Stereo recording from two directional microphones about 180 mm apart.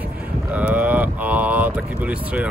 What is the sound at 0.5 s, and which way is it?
Speech, 10° right (ahead or behind).